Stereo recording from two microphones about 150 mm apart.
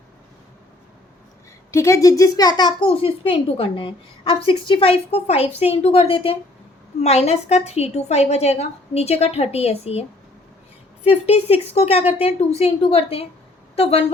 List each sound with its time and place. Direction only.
1.7 s a woman's voice: 20° left (ahead or behind); by 14.0 s 40° left (ahead or behind)